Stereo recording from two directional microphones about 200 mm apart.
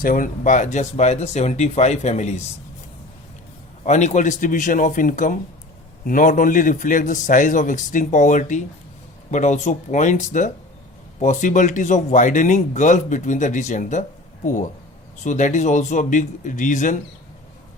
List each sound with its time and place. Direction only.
0.0 s speech: 40° left (ahead or behind)
3.8 s speech: 35° left (ahead or behind)
15.2 s speech: 40° left (ahead or behind)